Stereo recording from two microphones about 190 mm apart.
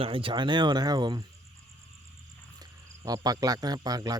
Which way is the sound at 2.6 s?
20° right (ahead or behind).